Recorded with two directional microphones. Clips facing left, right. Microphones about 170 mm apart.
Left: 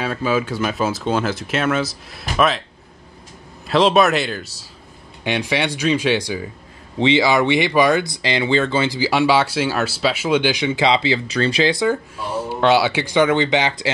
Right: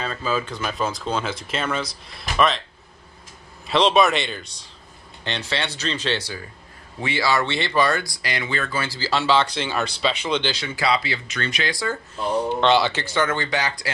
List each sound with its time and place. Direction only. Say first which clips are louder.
0.0 s speech: left 5 dB; 5° left (ahead or behind)
3.6 s speech: left 3 dB; centre (ahead or behind); by 12.0 s 20° left (ahead or behind)
12.2 s speech: even; 10° left (ahead or behind)